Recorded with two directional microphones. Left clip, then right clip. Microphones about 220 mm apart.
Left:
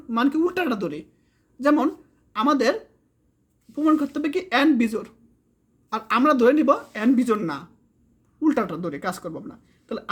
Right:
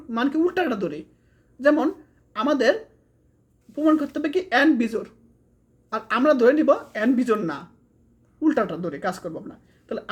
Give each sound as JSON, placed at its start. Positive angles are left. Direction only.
{"t": 0.1, "sound": "speech", "side_deg": 20}
{"t": 3.8, "sound": "speech", "side_deg": 20}